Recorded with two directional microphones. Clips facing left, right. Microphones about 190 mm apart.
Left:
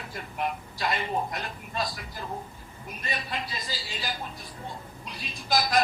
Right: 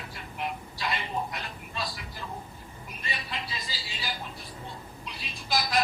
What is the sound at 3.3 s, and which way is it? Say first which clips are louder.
A woman's voice: left 3 dB; 50° left (ahead or behind).